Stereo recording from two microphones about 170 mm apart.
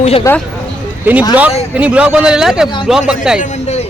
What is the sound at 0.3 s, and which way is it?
Speech, 15° left (ahead or behind).